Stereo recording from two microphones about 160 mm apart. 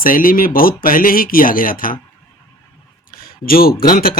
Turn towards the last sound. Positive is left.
turn(degrees=60)  # may be behind; listen again after turning